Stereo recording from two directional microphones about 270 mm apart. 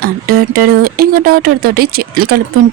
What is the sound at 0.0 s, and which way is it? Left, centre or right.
Speech, right.